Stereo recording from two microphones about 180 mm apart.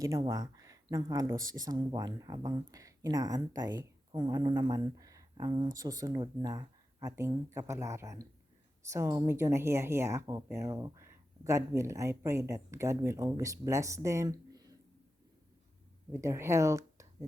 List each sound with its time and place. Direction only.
0.0 s a woman's voice: 20° right (ahead or behind)
16.1 s speech: 15° right (ahead or behind)